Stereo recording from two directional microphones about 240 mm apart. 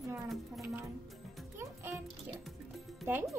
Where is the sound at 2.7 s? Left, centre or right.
Centre.